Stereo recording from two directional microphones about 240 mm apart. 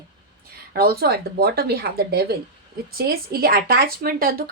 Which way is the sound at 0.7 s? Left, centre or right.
Right.